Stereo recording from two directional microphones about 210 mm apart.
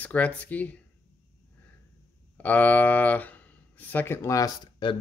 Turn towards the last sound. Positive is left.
turn(degrees=20)  # may be behind; listen again after turning